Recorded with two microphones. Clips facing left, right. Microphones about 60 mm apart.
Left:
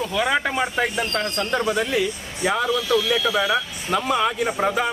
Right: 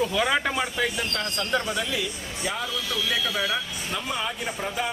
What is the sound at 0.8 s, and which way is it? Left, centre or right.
Speech, left.